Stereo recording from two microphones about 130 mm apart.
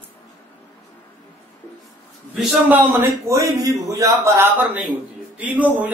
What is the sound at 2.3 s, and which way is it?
A man's voice, 10° right (ahead or behind).